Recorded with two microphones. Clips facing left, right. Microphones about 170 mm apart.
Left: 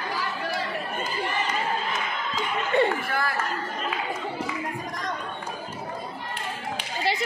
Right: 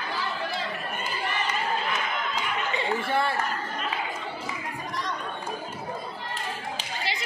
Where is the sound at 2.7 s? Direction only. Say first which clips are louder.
Left 14 dB; 60° left (ahead or behind).